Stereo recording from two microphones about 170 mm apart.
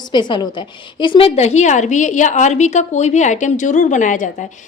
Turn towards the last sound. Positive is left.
turn(degrees=45)  # may be behind; listen again after turning